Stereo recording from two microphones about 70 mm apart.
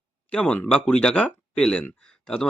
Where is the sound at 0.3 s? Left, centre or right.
Centre.